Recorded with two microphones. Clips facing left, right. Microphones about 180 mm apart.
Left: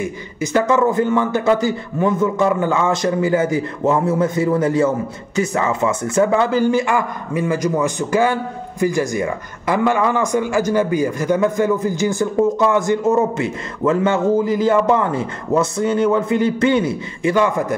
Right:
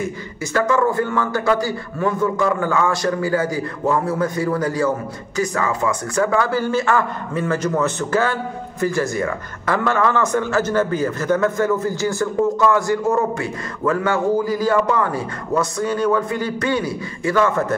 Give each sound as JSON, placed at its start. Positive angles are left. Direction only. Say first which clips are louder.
{"t": 0.0, "sound": "a man's voice", "louder": "left 2 dB", "side_deg": 20}